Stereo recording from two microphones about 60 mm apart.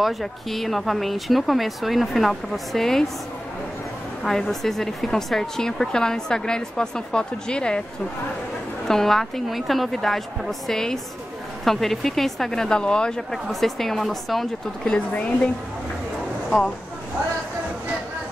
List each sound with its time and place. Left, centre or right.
0.0 s speech: centre
4.2 s a woman's voice: centre
8.8 s speech: centre
15.1 s a woman's voice: centre
16.4 s speech: centre